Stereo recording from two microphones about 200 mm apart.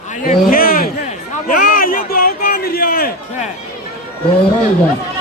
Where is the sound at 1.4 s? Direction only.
45° left (ahead or behind).